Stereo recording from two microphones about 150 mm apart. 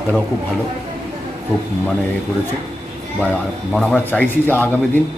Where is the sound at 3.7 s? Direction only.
5° left (ahead or behind).